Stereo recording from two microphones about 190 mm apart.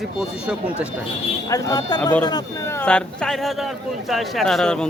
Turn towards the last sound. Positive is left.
turn(degrees=5)  # may be behind; listen again after turning